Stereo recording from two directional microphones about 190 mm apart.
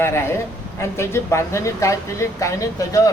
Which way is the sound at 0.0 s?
15° left (ahead or behind).